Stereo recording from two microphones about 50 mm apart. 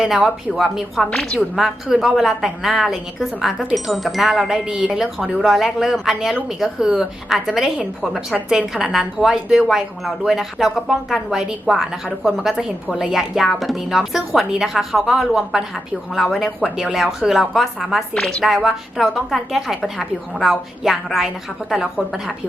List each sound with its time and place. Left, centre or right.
0.0 s speech: centre
1.1 s a woman's voice: centre
1.5 s a woman's voice: centre
4.7 s a woman's voice: right
4.9 s a woman's voice: centre
16.6 s a woman's voice: centre
18.4 s a woman's voice: centre